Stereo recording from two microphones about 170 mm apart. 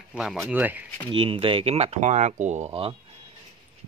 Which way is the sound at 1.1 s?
30° right (ahead or behind).